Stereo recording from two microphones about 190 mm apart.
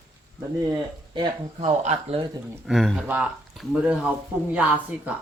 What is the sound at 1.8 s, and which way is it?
Speech, 35° right (ahead or behind).